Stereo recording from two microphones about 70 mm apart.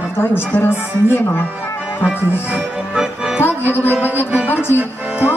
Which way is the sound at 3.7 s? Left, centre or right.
Left.